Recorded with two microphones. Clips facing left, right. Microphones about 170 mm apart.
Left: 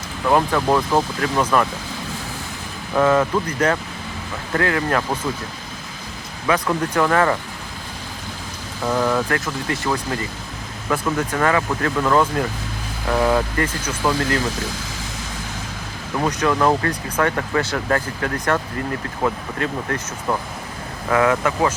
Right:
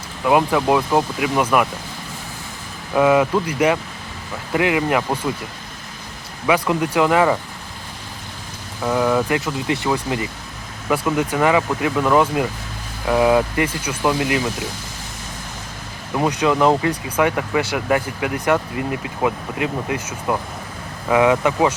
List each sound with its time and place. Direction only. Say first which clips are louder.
0.3 s speech: right 1 dB; 10° right (ahead or behind)
2.9 s speech: right 2 dB; 10° right (ahead or behind)
6.5 s speech: right 2 dB; 10° right (ahead or behind)
8.8 s speech: right 2 dB; centre (ahead or behind)
9.3 s speech: right 2 dB; 15° right (ahead or behind)
16.1 s speech: right 2 dB; 15° right (ahead or behind)